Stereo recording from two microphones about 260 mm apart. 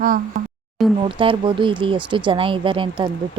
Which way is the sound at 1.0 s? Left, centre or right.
Centre.